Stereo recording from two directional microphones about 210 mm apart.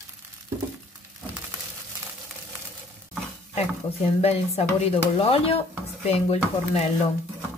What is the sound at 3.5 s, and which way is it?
A woman's voice, 30° left (ahead or behind).